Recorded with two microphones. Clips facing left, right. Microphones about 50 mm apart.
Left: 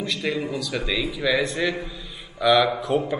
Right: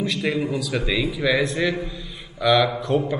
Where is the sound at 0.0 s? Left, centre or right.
Centre.